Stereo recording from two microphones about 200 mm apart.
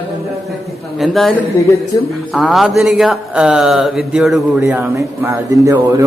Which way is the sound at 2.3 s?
Centre (ahead or behind).